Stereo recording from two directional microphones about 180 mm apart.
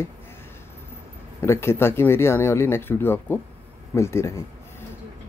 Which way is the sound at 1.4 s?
15° left (ahead or behind).